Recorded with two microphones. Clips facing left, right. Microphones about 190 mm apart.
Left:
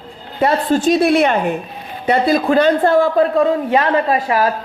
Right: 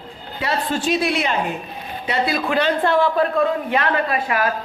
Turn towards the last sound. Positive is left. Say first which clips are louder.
# left 5 dB
turn(degrees=35)  # may be behind; listen again after turning